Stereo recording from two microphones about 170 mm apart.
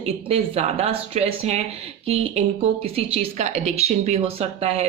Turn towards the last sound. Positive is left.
turn(degrees=-35)  # may be behind; listen again after turning